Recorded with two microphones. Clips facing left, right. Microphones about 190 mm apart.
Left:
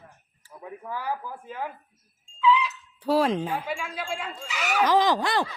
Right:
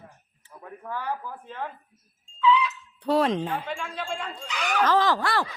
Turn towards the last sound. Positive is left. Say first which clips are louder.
# left 1 dB
turn(degrees=20)  # may be behind; listen again after turning